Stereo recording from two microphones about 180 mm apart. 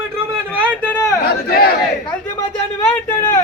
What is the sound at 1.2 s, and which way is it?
Battle cry, 55° left (ahead or behind).